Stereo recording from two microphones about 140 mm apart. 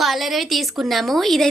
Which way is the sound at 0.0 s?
Centre (ahead or behind).